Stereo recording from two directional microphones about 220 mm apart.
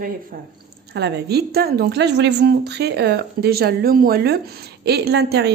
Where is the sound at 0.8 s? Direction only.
50° right (ahead or behind).